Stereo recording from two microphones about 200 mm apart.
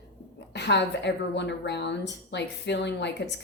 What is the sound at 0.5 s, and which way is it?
Speech, 60° left (ahead or behind).